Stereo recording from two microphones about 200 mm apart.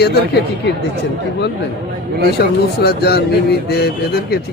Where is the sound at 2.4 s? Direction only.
55° left (ahead or behind).